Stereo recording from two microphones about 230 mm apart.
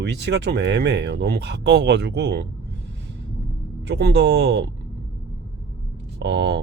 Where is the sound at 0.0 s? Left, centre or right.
Right.